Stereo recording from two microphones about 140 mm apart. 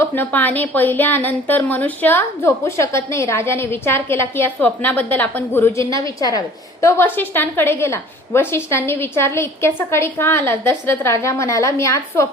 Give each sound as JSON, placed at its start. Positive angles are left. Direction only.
{"t": 0.0, "sound": "speech", "side_deg": 15}